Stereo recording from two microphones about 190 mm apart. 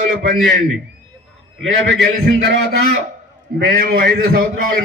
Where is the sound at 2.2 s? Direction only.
55° right (ahead or behind).